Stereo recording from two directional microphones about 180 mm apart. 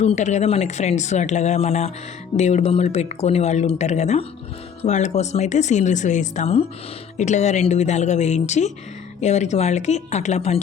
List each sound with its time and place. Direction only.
0.0 s speech: 40° left (ahead or behind)